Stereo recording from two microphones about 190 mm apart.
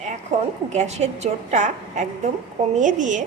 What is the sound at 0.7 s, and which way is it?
A woman's voice, 35° right (ahead or behind).